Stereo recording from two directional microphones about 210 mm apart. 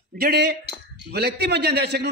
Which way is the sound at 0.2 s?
50° right (ahead or behind).